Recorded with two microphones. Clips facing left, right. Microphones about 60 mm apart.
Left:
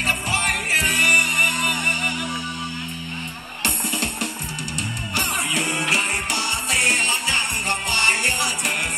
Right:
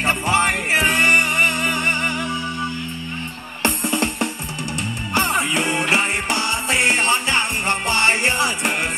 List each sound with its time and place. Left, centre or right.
0.0 s music: right
3.6 s music: right